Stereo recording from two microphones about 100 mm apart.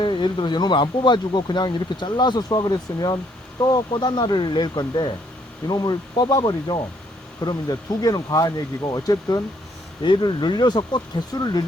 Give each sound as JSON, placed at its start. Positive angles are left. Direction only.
{"t": 0.0, "sound": "speech", "side_deg": 55}
{"t": 10.0, "sound": "speech", "side_deg": 50}
{"t": 11.3, "sound": "speech", "side_deg": 40}